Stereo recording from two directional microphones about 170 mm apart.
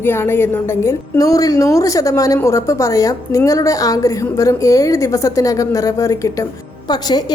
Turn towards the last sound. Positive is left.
turn(degrees=25)  # may be behind; listen again after turning